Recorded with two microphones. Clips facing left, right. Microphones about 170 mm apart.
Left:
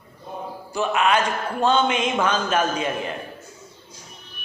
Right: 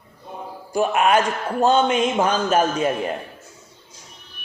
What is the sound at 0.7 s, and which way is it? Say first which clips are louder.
Speech: right 3 dB; 50° right (ahead or behind).